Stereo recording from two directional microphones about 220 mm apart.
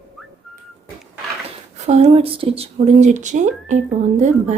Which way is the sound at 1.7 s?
30° right (ahead or behind).